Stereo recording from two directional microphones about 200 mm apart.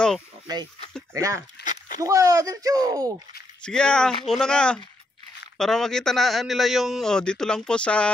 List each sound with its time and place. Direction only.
1.1 s speech: 15° right (ahead or behind)
1.6 s a sound: 40° left (ahead or behind)
2.0 s speech: 15° right (ahead or behind)
3.6 s a man's voice: 5° left (ahead or behind)